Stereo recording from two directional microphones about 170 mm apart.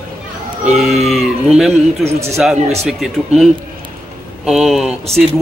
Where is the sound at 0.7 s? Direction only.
Centre (ahead or behind).